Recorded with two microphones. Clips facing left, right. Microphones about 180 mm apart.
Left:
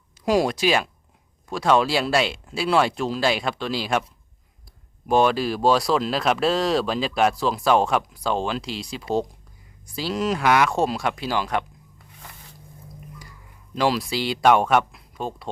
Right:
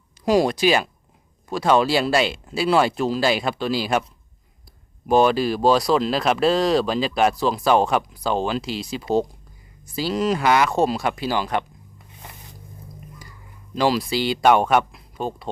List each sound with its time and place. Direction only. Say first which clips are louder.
0.3 s speech: right 2 dB; centre (ahead or behind)
5.0 s speech: right 2 dB; centre (ahead or behind)
11.9 s a sound: right 2 dB; 20° right (ahead or behind)
13.7 s speech: right 2 dB; centre (ahead or behind)